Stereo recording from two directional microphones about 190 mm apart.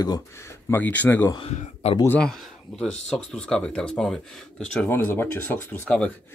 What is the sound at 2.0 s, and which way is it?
Speech, 5° left (ahead or behind).